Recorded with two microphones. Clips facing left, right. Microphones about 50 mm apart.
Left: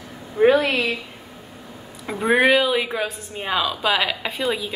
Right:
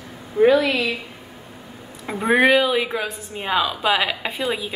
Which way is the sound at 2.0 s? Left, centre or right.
Centre.